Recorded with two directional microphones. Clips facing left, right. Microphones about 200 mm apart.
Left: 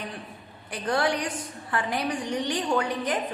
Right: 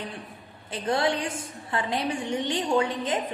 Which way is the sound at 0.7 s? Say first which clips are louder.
Even; 25° right (ahead or behind).